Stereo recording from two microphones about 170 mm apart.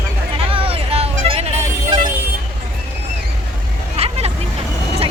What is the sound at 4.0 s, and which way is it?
Vehicle, 35° right (ahead or behind).